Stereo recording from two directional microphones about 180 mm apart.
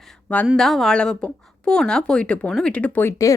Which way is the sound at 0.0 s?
5° left (ahead or behind).